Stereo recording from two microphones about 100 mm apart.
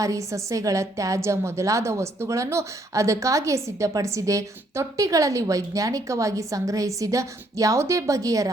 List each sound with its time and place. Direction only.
0.0 s a woman's voice: 30° right (ahead or behind)